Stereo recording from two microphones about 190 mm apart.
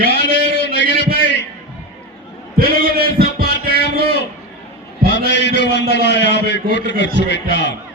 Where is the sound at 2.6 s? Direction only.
50° right (ahead or behind).